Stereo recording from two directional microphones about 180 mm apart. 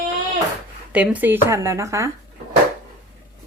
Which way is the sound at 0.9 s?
10° right (ahead or behind).